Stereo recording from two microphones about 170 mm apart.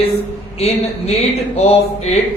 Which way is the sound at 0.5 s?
40° left (ahead or behind).